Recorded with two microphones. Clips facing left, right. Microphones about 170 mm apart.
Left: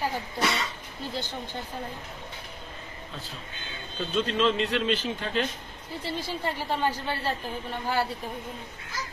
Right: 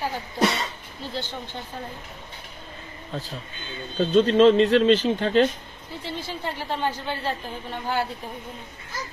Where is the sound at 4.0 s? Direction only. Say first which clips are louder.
Right 10 dB; 40° right (ahead or behind).